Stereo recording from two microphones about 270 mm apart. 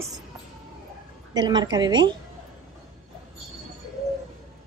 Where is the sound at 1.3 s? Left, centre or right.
Centre.